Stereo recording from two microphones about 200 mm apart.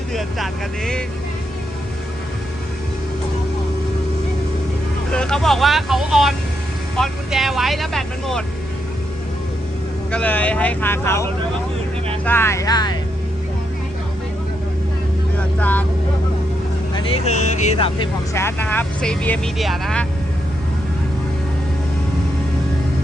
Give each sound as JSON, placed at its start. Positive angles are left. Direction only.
{"t": 0.1, "sound": "speech", "side_deg": 0}
{"t": 5.1, "sound": "speech", "side_deg": 5}
{"t": 10.1, "sound": "speech", "side_deg": 5}
{"t": 15.4, "sound": "vehicle", "side_deg": 5}
{"t": 17.2, "sound": "speech", "side_deg": 35}
{"t": 18.3, "sound": "speech", "side_deg": 10}